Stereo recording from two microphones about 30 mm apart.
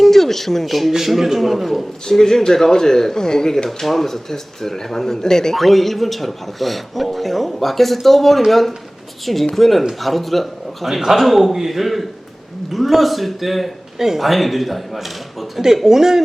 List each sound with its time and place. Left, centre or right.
0.0 s a man's voice: centre
2.0 s speech: centre
3.7 s speech: centre
5.5 s a man's voice: centre
10.9 s a man's voice: centre
15.6 s speech: centre